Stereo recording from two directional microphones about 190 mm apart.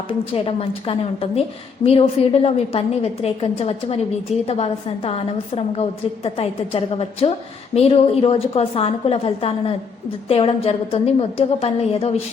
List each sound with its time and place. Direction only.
0.1 s a woman's voice: 30° left (ahead or behind)